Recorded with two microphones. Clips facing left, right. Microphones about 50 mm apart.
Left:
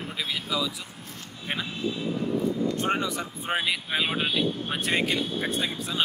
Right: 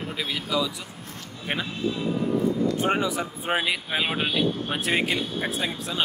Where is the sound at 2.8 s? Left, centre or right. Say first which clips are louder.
Right 3 dB; centre.